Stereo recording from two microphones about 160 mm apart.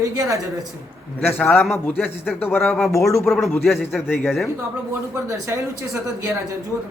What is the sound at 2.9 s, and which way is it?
Speech, 20° left (ahead or behind).